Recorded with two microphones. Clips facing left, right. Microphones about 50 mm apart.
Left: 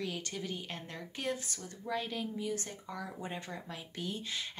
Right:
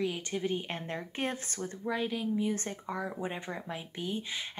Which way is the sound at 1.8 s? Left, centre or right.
Centre.